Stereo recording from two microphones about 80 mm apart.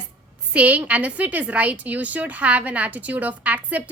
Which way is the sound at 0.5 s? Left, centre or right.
Centre.